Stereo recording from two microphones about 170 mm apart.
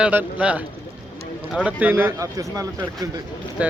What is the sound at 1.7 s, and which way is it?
Speech, 10° right (ahead or behind).